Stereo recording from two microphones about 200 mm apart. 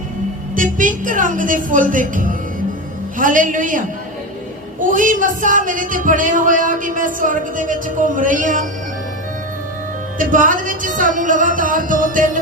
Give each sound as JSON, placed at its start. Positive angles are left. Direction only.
{"t": 0.5, "sound": "speech", "side_deg": -40}
{"t": 10.2, "sound": "speech", "side_deg": -40}